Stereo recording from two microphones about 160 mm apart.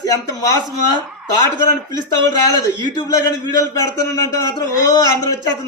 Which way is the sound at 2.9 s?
25° left (ahead or behind).